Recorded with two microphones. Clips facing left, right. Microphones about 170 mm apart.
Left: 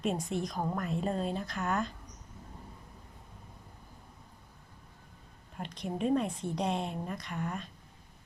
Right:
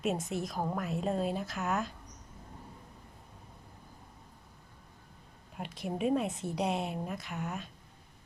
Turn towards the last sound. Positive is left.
turn(degrees=-5)  # may be behind; listen again after turning